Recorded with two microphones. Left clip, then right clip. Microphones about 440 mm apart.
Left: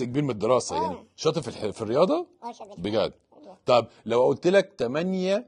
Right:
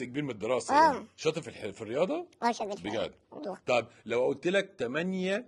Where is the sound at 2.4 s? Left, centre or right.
Right.